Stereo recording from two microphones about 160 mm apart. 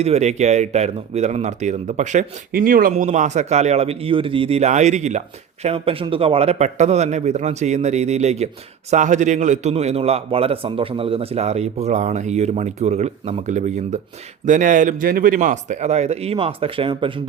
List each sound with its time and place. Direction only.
0.0 s speech: 45° right (ahead or behind)
2.5 s speech: 60° right (ahead or behind)
2.9 s speech: 50° right (ahead or behind)
5.6 s speech: 35° right (ahead or behind)